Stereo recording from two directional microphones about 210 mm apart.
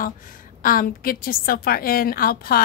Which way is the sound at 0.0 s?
40° left (ahead or behind).